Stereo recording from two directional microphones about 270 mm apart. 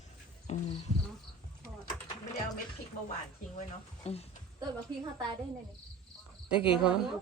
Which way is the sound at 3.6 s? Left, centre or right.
Left.